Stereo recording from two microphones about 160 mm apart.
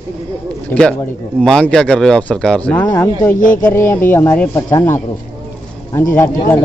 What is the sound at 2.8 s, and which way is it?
Speech, 25° left (ahead or behind).